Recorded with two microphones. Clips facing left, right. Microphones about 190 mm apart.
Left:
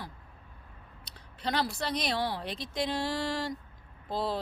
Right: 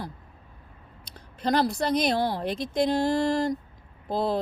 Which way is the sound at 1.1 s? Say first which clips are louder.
Right 7 dB; 45° right (ahead or behind).